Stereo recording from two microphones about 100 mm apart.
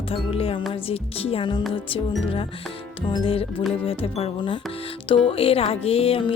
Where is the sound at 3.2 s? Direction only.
65° left (ahead or behind).